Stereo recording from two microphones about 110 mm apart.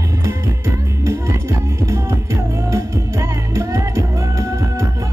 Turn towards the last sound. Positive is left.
turn(degrees=-30)  # may be behind; listen again after turning